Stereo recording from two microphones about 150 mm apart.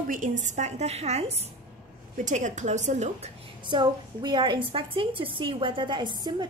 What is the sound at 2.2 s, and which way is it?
A woman's voice, 55° right (ahead or behind).